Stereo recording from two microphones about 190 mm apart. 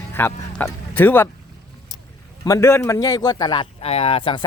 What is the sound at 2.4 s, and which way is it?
Speech, 15° left (ahead or behind).